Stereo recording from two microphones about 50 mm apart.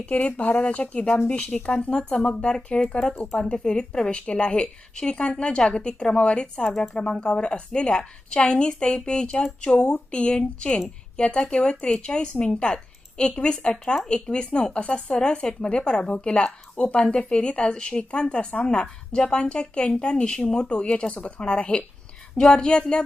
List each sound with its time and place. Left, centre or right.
0.0 s a woman's voice: left